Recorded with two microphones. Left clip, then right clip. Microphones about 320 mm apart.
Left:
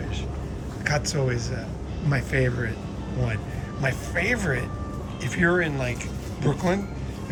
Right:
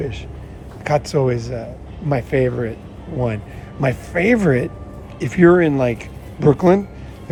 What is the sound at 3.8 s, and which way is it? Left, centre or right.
Speech, centre.